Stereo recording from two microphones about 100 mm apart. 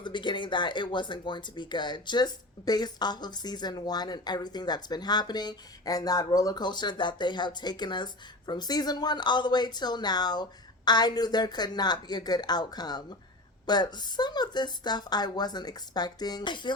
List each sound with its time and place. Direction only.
0.0 s speech: 50° left (ahead or behind)